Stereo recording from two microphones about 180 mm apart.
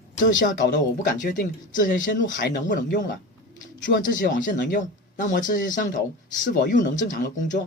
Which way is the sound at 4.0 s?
45° left (ahead or behind).